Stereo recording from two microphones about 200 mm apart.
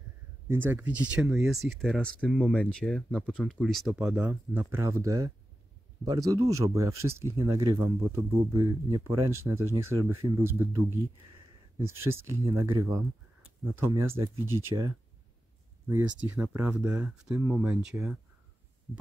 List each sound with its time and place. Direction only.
0.5 s speech: 10° right (ahead or behind)
12.8 s speech: centre (ahead or behind)
13.7 s speech: 10° right (ahead or behind)